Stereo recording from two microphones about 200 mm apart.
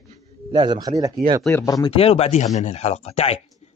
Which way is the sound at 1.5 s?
15° left (ahead or behind).